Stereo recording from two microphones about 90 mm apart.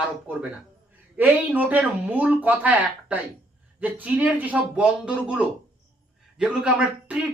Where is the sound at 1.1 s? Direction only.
20° right (ahead or behind).